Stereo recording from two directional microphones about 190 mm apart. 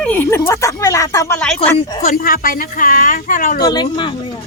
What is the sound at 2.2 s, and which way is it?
A woman's voice, 50° left (ahead or behind).